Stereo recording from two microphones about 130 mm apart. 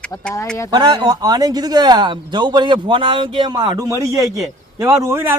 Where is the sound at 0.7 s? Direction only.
35° right (ahead or behind).